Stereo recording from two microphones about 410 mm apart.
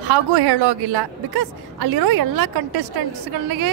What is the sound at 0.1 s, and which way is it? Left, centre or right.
Speech, right.